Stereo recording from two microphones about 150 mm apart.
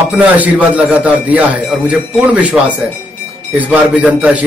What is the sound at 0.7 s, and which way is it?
Speech, 10° right (ahead or behind).